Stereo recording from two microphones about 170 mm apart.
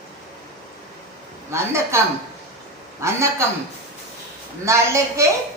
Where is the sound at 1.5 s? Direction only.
15° right (ahead or behind).